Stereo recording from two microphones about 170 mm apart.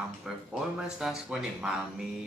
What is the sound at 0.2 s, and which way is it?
Speech, 5° right (ahead or behind).